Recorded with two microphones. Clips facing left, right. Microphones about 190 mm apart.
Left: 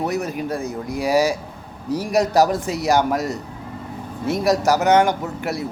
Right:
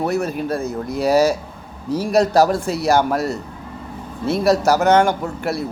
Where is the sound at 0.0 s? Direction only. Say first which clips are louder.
Right 3 dB; 15° left (ahead or behind).